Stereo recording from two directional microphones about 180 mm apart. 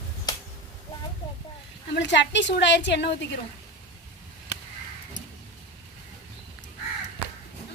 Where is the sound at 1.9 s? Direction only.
75° left (ahead or behind).